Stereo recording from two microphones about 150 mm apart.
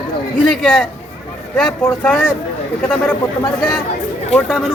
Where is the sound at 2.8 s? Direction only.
5° left (ahead or behind).